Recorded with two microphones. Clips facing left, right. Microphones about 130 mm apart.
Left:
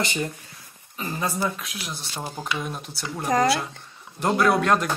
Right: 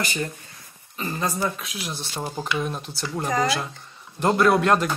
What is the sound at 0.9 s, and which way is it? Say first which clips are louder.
Speech: right 1 dB; 10° left (ahead or behind).